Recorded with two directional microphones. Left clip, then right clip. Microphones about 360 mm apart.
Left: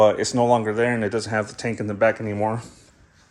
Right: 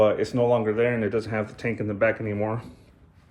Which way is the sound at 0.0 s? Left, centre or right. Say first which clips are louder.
Left 3 dB; centre.